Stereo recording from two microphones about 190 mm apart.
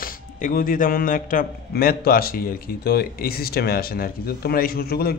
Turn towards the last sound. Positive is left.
turn(degrees=55)  # may be behind; listen again after turning